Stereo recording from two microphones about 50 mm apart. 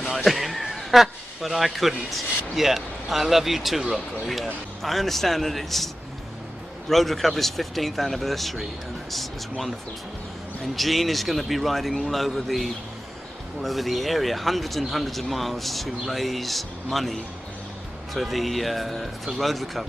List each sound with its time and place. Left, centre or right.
0.0 s speech: centre
6.9 s speech: centre
10.8 s speech: centre